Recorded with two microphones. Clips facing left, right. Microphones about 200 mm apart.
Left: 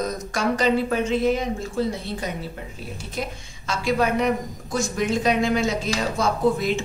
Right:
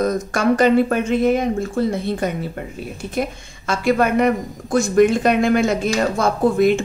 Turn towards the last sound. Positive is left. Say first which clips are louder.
# right 6 dB
turn(degrees=-55)  # may be behind; listen again after turning